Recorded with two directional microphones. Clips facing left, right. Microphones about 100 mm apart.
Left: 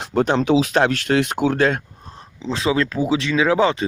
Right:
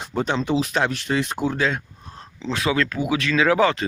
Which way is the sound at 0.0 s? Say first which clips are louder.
Left 5 dB; 65° left (ahead or behind).